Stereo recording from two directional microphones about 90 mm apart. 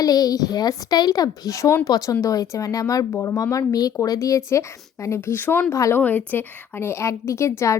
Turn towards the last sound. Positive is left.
turn(degrees=30)  # may be behind; listen again after turning